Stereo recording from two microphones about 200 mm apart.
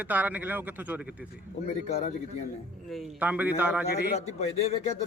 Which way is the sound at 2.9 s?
5° right (ahead or behind).